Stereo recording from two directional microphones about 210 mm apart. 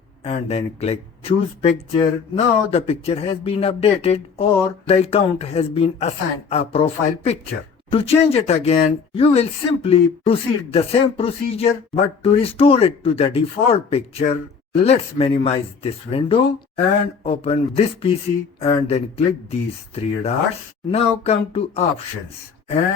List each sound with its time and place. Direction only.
0.3 s speech: 30° left (ahead or behind)